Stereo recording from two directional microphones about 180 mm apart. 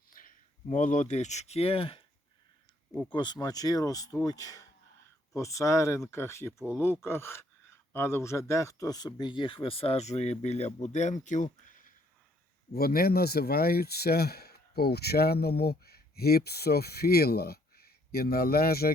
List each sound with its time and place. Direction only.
0.7 s speech: 45° left (ahead or behind)
3.1 s speech: 25° left (ahead or behind); by 11.9 s 45° left (ahead or behind)
12.7 s speech: 60° left (ahead or behind)